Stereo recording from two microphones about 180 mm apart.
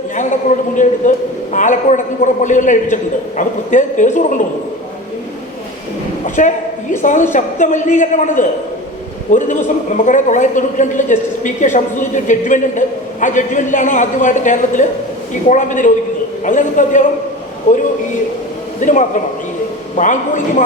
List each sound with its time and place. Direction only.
0.2 s a man's voice: 45° left (ahead or behind)
6.2 s a sound: 45° left (ahead or behind)
6.9 s a man's voice: 45° left (ahead or behind)
18.8 s a man's voice: 45° left (ahead or behind)